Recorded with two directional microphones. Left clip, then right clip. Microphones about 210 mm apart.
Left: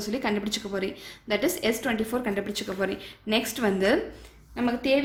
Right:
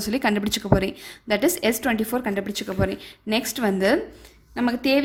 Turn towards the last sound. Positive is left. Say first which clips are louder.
# right 3 dB
turn(degrees=-35)  # may be behind; listen again after turning